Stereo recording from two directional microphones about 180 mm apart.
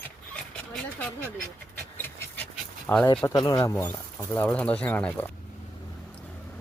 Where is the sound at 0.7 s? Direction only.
10° left (ahead or behind).